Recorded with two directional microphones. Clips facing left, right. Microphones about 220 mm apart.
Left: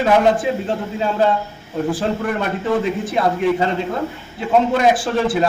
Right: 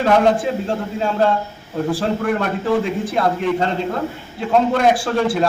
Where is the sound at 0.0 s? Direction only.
5° left (ahead or behind).